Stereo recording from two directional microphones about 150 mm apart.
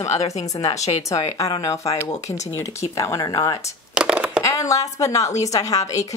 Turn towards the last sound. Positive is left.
turn(degrees=20)  # may be behind; listen again after turning